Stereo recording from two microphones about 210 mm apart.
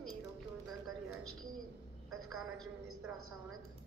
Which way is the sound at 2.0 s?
Centre (ahead or behind).